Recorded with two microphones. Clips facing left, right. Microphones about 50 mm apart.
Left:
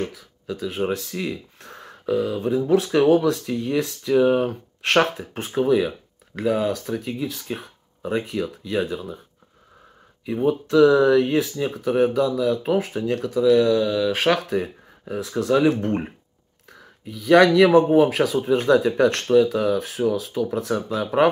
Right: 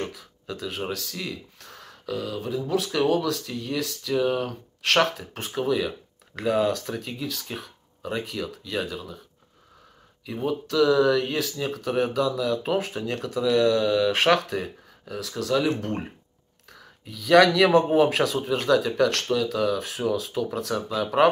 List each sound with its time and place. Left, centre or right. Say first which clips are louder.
0.0 s speech: left 4 dB; centre; by 5.9 s left
6.3 s speech: left 1 dB; centre
10.2 s speech: left 6 dB; left
14.9 s speech: left 5 dB; left
16.6 s speech: left 5 dB; centre